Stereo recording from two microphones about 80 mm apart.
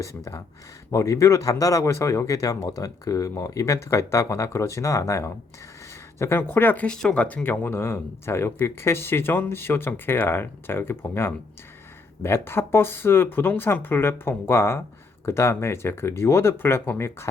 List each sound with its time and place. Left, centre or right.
0.9 s speech: left
6.8 s speech: centre; by 17.2 s left